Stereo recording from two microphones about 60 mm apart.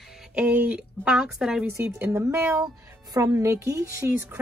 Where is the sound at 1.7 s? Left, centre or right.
Right.